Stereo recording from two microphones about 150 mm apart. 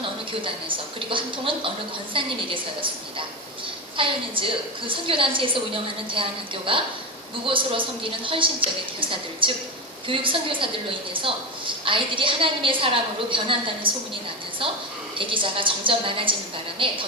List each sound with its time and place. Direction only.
0.9 s a woman's voice: 35° right (ahead or behind)
3.9 s a woman's voice: 35° right (ahead or behind)
11.9 s a woman's voice: 35° right (ahead or behind)